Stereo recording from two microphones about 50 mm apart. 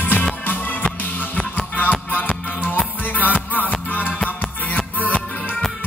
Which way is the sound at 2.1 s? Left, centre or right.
Left.